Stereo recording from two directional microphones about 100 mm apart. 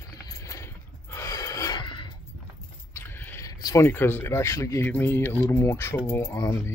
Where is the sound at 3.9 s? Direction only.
20° left (ahead or behind).